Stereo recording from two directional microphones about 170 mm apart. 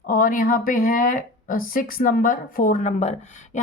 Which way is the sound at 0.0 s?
55° left (ahead or behind).